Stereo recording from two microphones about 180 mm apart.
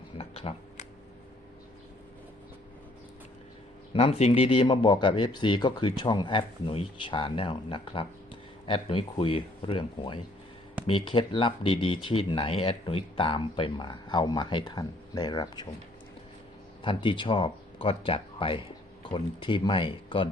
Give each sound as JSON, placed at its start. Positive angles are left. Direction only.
{"t": 0.2, "sound": "a sound", "side_deg": 35}
{"t": 3.9, "sound": "speech", "side_deg": 35}
{"t": 16.8, "sound": "speech", "side_deg": 25}